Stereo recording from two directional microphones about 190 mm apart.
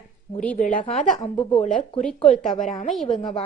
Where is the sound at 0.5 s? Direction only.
40° left (ahead or behind).